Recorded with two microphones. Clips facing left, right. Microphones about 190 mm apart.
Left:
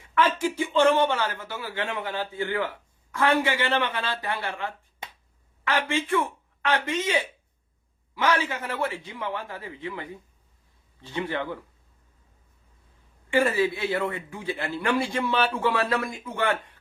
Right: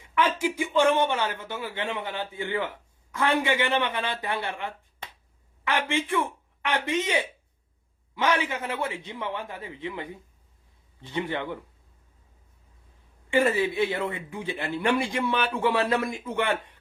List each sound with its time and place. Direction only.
0.1 s a man's voice: 15° right (ahead or behind)
13.3 s a man's voice: 20° right (ahead or behind)